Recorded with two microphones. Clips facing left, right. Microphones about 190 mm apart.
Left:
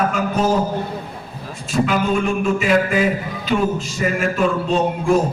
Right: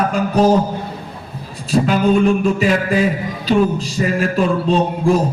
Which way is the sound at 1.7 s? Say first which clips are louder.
Right 4 dB; 35° right (ahead or behind).